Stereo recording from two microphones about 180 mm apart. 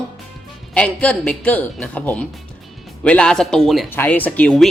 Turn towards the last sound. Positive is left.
turn(degrees=5)  # may be behind; listen again after turning